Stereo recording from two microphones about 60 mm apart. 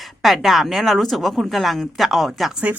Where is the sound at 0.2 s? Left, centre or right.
Centre.